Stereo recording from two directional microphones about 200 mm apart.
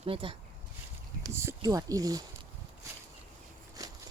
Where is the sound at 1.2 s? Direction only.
15° right (ahead or behind).